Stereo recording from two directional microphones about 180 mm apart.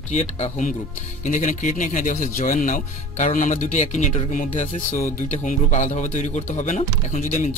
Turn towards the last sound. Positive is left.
turn(degrees=45)  # may be behind; listen again after turning